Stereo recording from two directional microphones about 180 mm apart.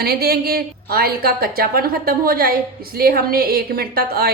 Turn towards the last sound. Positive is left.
turn(degrees=-60)  # may be behind; listen again after turning